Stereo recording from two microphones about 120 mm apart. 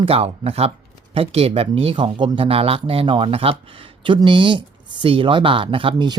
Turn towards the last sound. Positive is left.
turn(degrees=-45)  # may be behind; listen again after turning